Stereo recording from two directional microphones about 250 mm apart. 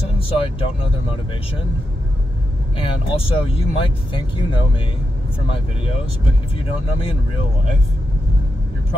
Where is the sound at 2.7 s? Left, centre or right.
Left.